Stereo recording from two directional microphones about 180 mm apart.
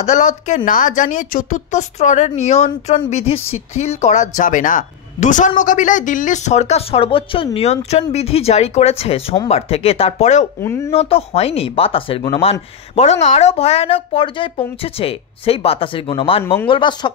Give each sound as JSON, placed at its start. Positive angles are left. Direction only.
{"t": 0.0, "sound": "a woman's voice", "side_deg": 40}
{"t": 10.6, "sound": "speech", "side_deg": 15}
{"t": 10.9, "sound": "a woman's voice", "side_deg": 35}